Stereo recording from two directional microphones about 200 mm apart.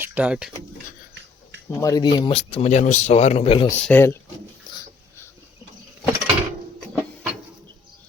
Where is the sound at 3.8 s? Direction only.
10° left (ahead or behind).